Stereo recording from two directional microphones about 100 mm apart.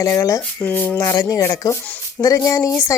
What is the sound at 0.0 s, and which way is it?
Speech, 35° left (ahead or behind).